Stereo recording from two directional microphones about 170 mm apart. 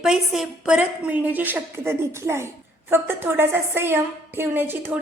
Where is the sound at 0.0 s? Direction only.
5° right (ahead or behind).